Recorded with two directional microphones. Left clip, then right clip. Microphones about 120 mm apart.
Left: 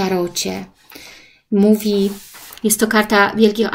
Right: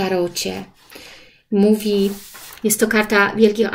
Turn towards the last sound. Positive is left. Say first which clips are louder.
# even
turn(degrees=35)  # may be behind; listen again after turning